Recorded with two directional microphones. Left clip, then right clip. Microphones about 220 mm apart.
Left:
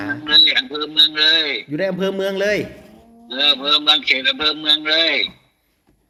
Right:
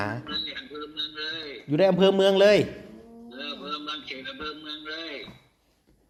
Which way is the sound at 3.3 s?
50° left (ahead or behind).